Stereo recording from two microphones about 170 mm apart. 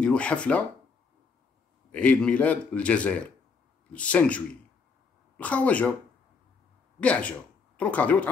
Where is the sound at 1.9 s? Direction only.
10° left (ahead or behind).